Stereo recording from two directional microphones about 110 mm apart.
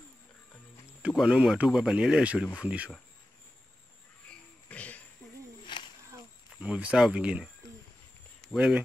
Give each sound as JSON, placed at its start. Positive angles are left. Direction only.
{"t": 1.1, "sound": "speech", "side_deg": -5}
{"t": 4.6, "sound": "a sound", "side_deg": 15}
{"t": 5.7, "sound": "snake", "side_deg": 45}
{"t": 6.6, "sound": "speech", "side_deg": -10}
{"t": 8.5, "sound": "speech", "side_deg": -10}